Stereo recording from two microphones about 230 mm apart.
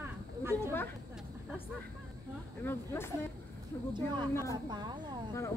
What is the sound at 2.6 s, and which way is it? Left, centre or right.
Speech, centre.